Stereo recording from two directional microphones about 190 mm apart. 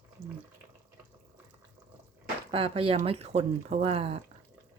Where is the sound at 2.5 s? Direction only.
30° right (ahead or behind).